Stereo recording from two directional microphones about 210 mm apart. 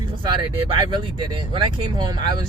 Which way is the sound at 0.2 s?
20° right (ahead or behind).